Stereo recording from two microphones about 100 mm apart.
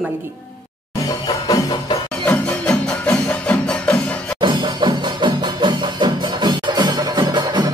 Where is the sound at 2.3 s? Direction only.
15° left (ahead or behind).